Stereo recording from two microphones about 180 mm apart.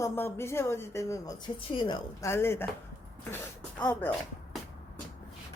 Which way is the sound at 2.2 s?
15° left (ahead or behind).